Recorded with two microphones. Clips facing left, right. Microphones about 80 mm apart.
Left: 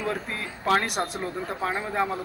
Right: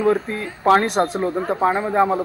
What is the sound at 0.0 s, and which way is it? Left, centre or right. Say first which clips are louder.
A man's voice: right 11 dB; right.